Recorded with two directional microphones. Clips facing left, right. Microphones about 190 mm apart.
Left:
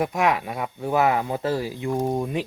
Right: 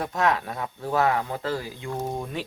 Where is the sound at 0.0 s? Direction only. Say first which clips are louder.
Left 2 dB; 15° left (ahead or behind).